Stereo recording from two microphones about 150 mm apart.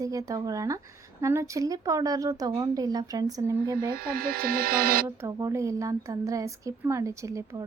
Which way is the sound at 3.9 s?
80° right.